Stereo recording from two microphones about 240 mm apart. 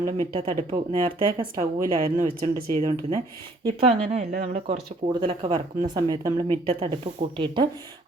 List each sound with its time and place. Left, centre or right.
0.0 s speech: right